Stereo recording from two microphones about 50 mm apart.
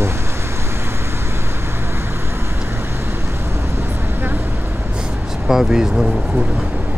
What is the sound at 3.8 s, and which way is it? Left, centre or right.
Vehicle, right.